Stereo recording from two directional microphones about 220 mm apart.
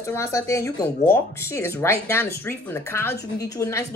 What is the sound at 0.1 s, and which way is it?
Speech, 15° left (ahead or behind).